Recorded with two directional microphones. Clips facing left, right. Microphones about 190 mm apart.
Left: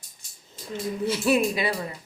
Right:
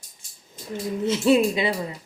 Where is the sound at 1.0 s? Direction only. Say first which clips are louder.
Right 4 dB; 20° right (ahead or behind).